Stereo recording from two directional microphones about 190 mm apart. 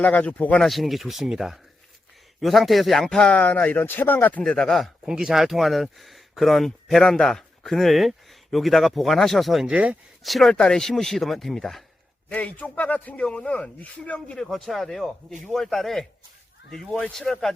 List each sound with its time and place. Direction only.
0.0 s a man's voice: 5° left (ahead or behind)